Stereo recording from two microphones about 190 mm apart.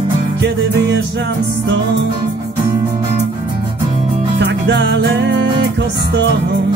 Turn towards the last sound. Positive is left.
turn(degrees=-65)  # may be behind; listen again after turning